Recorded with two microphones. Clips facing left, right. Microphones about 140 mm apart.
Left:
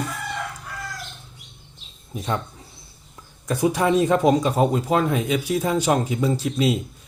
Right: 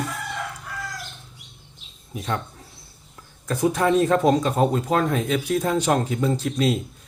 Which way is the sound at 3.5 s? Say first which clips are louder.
Even; centre (ahead or behind).